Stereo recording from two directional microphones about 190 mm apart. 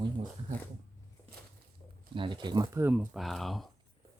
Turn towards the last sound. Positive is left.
turn(degrees=0)  # may be behind; listen again after turning